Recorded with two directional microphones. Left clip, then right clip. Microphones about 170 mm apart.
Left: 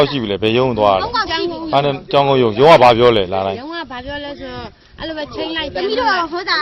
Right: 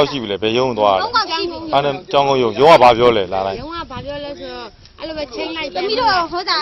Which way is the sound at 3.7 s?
20° left (ahead or behind).